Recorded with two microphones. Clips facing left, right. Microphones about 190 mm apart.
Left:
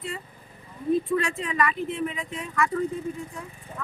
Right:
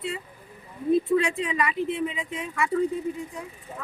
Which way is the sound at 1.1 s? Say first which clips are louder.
Right 3 dB; 15° right (ahead or behind).